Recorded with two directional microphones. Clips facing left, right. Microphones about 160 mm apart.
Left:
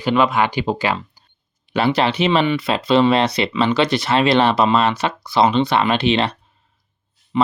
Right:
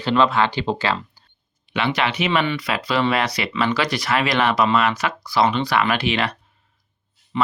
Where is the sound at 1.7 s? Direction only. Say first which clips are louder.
Left 5 dB; 35° left (ahead or behind).